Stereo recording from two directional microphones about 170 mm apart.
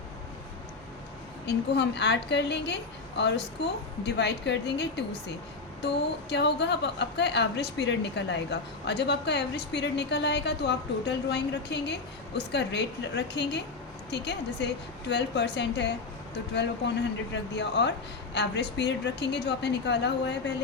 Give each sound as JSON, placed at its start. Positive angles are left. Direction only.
{"t": 1.5, "sound": "a woman's voice", "side_deg": 80}